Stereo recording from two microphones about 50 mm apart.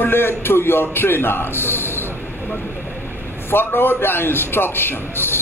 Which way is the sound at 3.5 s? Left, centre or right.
Left.